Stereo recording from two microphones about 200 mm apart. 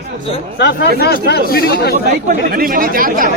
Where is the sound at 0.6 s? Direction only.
60° left (ahead or behind).